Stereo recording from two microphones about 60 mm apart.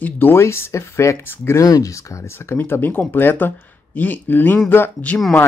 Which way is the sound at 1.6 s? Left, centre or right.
Left.